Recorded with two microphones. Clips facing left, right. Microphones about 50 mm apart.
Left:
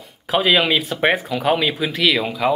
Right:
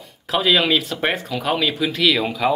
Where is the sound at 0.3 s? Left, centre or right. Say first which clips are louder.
Left 1 dB; centre.